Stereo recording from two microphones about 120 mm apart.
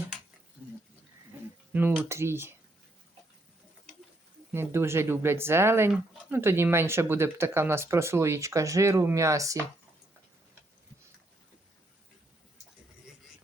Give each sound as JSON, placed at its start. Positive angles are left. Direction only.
{"t": 0.6, "sound": "pig", "side_deg": -15}
{"t": 1.7, "sound": "speech", "side_deg": -15}
{"t": 4.5, "sound": "speech", "side_deg": -20}